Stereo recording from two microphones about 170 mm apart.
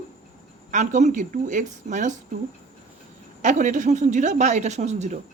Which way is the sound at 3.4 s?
45° right (ahead or behind).